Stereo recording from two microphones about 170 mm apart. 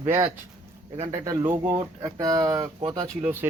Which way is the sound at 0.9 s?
40° right (ahead or behind).